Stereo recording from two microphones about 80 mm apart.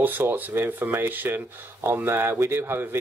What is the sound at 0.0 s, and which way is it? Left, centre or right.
Speech, right.